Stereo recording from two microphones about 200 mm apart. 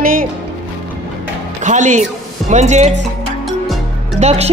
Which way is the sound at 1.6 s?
40° right (ahead or behind).